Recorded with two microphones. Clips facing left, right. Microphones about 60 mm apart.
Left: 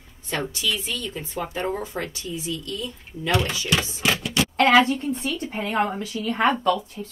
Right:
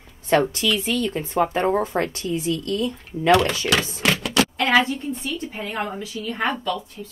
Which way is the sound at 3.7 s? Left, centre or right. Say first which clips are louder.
Right 2 dB; right.